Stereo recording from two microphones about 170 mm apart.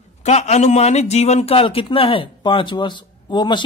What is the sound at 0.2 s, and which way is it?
A man's voice, 40° left (ahead or behind).